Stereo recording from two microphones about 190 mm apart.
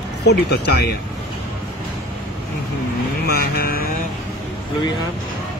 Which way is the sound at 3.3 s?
55° left (ahead or behind).